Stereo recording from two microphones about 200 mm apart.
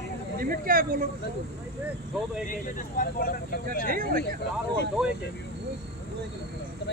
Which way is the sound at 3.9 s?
45° right (ahead or behind).